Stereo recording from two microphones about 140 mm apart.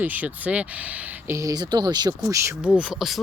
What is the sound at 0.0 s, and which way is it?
Speech, 10° right (ahead or behind).